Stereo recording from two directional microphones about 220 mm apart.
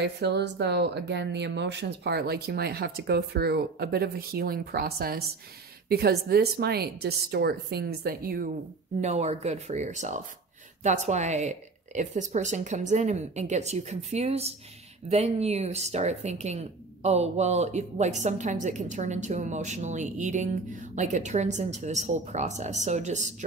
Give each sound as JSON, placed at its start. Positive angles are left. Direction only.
{"t": 0.0, "sound": "speech", "side_deg": -50}
{"t": 9.0, "sound": "speech", "side_deg": -30}